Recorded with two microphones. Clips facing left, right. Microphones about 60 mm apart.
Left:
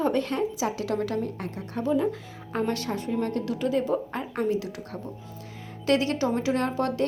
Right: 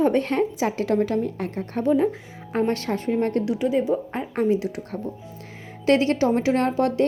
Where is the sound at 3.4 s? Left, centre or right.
Centre.